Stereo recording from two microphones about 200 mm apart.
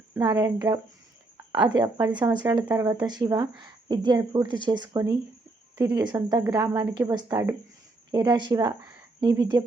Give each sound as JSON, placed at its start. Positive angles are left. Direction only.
{"t": 0.1, "sound": "a woman's voice", "side_deg": -20}